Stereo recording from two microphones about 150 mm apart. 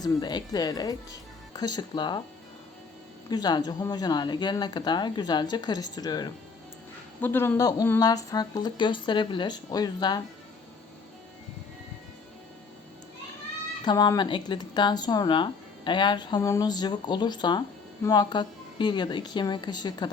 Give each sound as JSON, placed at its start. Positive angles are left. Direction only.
{"t": 0.0, "sound": "speech", "side_deg": 25}
{"t": 3.2, "sound": "speech", "side_deg": 30}
{"t": 7.2, "sound": "speech", "side_deg": 15}
{"t": 13.8, "sound": "speech", "side_deg": 25}